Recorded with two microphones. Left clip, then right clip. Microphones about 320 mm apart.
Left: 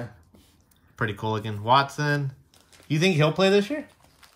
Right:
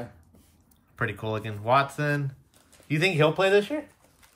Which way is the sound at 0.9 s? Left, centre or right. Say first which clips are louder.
Left 2 dB; centre.